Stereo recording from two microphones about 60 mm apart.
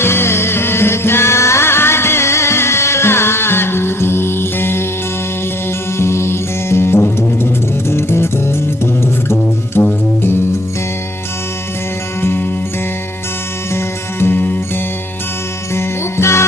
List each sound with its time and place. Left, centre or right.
0.0 s music: left
6.0 s music: left
9.8 s music: left
13.7 s music: left
15.7 s music: left